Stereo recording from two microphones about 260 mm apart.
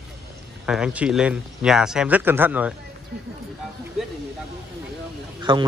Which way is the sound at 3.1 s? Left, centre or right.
Right.